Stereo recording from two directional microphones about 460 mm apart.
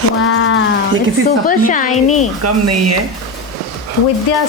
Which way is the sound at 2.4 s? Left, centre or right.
Right.